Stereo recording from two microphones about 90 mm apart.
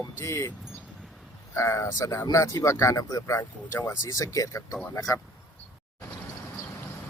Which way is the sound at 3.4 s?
30° left (ahead or behind).